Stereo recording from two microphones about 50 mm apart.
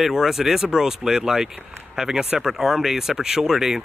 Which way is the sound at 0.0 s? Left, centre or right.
Centre.